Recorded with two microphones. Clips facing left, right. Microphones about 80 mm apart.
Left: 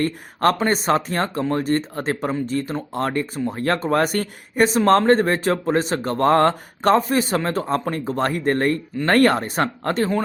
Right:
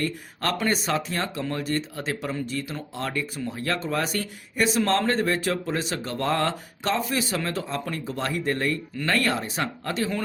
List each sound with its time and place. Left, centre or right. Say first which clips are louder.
0.0 s speech: left 9 dB; left